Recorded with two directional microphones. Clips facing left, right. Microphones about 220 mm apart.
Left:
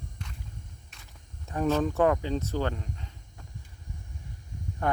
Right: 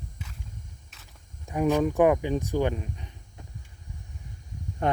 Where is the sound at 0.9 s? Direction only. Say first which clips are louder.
Even; 5° right (ahead or behind).